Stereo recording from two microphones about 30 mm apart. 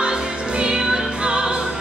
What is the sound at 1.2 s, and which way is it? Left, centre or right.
Opera, right.